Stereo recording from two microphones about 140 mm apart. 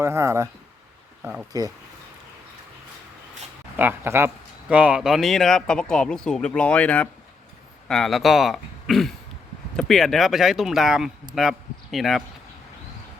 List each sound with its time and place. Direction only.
0.0 s speech: 20° right (ahead or behind)
1.2 s speech: 10° right (ahead or behind)
3.8 s speech: 15° right (ahead or behind)